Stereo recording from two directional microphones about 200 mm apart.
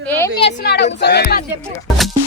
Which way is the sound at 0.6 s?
55° left (ahead or behind).